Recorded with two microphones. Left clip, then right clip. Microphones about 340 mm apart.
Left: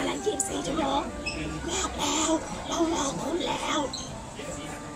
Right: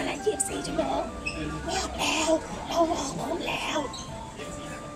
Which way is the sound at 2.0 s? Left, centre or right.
Centre.